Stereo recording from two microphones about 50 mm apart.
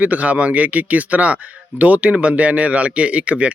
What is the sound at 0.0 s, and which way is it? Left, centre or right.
Speech, right.